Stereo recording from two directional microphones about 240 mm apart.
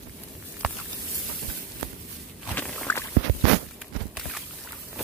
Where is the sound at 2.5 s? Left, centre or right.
Centre.